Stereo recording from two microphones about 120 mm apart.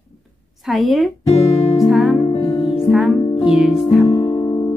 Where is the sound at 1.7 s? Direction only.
5° right (ahead or behind).